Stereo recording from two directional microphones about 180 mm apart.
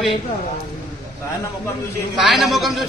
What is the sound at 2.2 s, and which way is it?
Speech, centre (ahead or behind).